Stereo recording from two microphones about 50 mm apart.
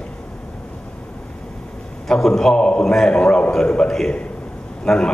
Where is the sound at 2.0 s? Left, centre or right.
Centre.